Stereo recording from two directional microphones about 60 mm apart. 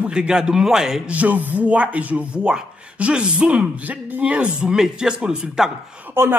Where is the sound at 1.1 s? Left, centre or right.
Right.